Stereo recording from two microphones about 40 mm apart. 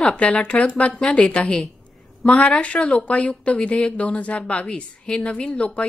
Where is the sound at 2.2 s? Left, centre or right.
Left.